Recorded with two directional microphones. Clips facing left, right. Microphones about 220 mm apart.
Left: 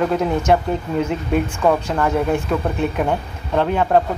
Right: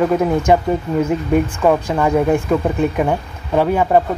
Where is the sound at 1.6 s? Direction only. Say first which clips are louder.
Right 2 dB; 10° right (ahead or behind).